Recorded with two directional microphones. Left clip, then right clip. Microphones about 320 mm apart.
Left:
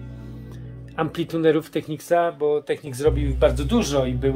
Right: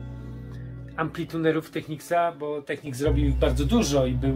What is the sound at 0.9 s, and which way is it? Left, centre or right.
Speech, left.